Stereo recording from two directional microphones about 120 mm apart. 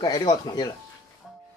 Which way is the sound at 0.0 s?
35° left (ahead or behind).